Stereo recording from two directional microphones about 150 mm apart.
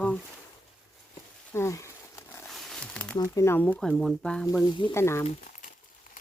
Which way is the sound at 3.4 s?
15° left (ahead or behind).